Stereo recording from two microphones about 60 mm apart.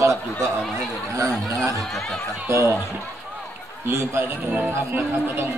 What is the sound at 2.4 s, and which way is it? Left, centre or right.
Speech, right.